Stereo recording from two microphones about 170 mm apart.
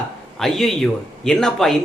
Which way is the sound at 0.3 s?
Centre (ahead or behind).